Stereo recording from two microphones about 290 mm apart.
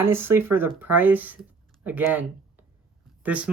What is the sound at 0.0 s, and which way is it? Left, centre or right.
Speech, centre.